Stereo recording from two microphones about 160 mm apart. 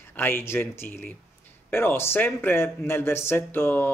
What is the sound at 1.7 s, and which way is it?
Speech, 15° left (ahead or behind).